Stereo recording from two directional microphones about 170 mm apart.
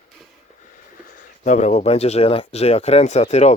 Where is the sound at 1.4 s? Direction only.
45° left (ahead or behind).